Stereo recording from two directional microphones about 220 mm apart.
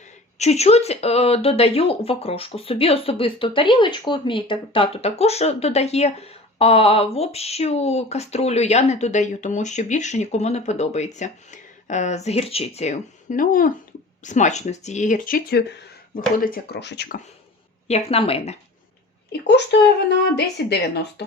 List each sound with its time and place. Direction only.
0.3 s speech: 30° left (ahead or behind); by 17.2 s 50° left (ahead or behind)
17.8 s speech: 30° left (ahead or behind)
19.3 s speech: 50° left (ahead or behind)